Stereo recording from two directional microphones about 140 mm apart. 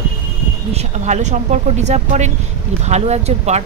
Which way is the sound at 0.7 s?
55° right (ahead or behind).